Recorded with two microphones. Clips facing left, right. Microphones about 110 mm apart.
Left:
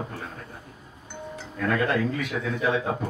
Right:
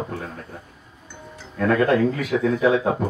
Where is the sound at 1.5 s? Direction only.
60° right (ahead or behind).